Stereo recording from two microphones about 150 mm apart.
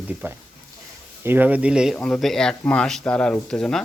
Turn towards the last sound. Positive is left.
turn(degrees=5)  # may be behind; listen again after turning